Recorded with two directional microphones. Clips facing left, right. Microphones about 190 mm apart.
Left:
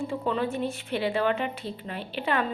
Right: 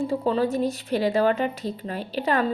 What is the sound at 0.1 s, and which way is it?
A woman's voice, 35° right (ahead or behind).